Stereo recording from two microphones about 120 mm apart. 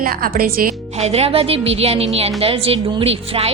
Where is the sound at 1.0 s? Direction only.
60° right (ahead or behind).